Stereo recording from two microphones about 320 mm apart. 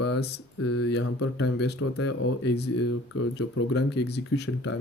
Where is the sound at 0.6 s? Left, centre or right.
Left.